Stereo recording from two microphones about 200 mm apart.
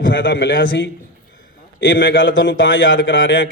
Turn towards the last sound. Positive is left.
turn(degrees=65)  # may be behind; listen again after turning